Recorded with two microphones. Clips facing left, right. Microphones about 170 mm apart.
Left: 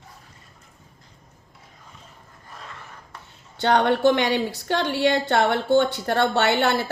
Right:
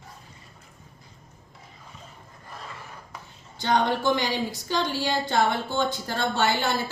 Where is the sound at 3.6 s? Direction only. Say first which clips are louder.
Left 5 dB; 65° left (ahead or behind).